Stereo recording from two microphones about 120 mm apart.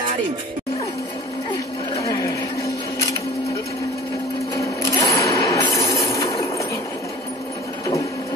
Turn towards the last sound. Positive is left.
turn(degrees=25)  # may be behind; listen again after turning